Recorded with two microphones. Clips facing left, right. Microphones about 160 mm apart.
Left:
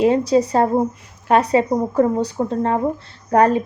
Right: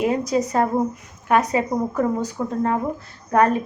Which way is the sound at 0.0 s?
30° left (ahead or behind).